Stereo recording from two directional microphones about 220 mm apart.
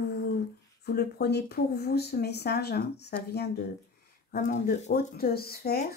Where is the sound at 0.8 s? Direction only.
45° left (ahead or behind).